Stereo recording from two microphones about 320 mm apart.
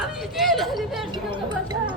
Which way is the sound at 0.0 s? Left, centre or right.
Centre.